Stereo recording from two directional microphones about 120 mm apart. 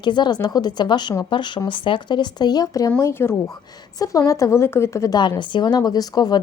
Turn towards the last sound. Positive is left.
turn(degrees=35)  # may be behind; listen again after turning